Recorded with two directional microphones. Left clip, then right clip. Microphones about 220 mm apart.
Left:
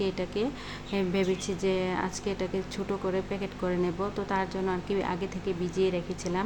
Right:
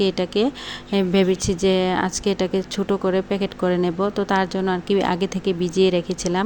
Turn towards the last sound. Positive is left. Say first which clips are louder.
# right 9 dB
turn(degrees=-35)  # may be behind; listen again after turning